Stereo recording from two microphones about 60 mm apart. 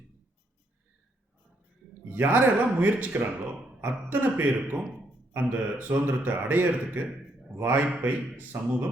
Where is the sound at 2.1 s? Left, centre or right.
Right.